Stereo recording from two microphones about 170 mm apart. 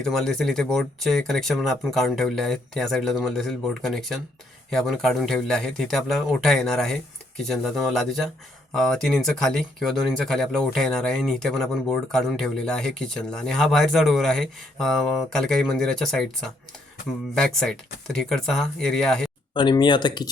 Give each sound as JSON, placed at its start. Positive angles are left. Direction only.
{"t": 0.0, "sound": "speech", "side_deg": 5}
{"t": 19.5, "sound": "speech", "side_deg": 25}